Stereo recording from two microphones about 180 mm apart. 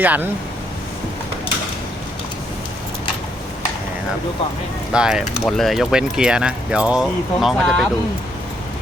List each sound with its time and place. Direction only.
0.0 s speech: 10° right (ahead or behind)
4.9 s speech: 5° right (ahead or behind)